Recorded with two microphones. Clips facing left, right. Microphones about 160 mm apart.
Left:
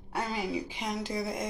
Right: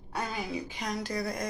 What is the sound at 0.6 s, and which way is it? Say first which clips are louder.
Speech: even; 20° left (ahead or behind).